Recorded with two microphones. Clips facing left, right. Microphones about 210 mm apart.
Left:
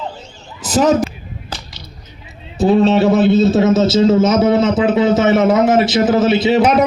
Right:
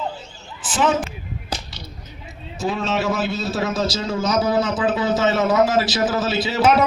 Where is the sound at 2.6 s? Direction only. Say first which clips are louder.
Left 11 dB; 35° left (ahead or behind).